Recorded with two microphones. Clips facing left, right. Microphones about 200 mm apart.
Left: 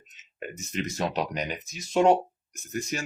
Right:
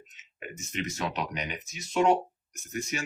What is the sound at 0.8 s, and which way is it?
Speech, 35° left (ahead or behind).